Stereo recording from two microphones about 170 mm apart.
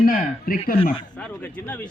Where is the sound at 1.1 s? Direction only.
10° left (ahead or behind).